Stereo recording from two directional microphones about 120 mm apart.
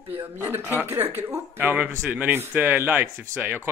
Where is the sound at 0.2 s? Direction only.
20° right (ahead or behind).